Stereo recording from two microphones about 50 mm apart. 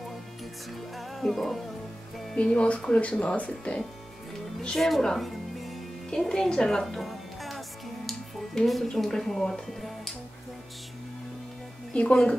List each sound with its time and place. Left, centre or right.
0.9 s music: centre
2.3 s speech: left
4.6 s music: centre
6.0 s a woman's voice: centre
6.8 s music: centre
8.8 s speech: centre
11.9 s speech: left